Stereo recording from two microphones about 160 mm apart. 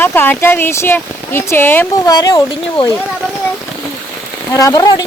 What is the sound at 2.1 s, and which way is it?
Speech, 25° left (ahead or behind).